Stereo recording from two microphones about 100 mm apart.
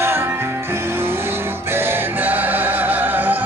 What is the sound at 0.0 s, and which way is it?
Music, 25° right (ahead or behind).